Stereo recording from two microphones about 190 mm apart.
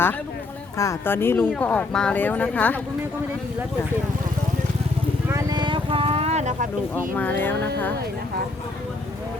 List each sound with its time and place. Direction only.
0.8 s speech: 15° left (ahead or behind)
5.3 s vehicle: 20° right (ahead or behind); by 6.7 s 35° right (ahead or behind)
7.2 s speech: 10° left (ahead or behind)